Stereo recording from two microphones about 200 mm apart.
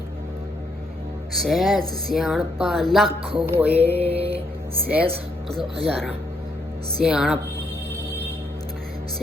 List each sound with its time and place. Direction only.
1.3 s speech: centre (ahead or behind)
3.4 s music: 10° right (ahead or behind)
3.9 s mantra: 30° right (ahead or behind)
4.9 s speech: 5° right (ahead or behind)